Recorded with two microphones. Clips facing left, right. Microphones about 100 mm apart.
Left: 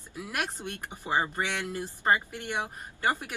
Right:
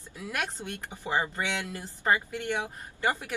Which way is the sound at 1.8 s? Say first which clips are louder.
Even; 20° left (ahead or behind).